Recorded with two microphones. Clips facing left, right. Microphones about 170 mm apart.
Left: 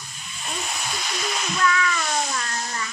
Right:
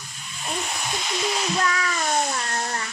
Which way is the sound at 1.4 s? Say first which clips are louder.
Left 1 dB; 35° right (ahead or behind).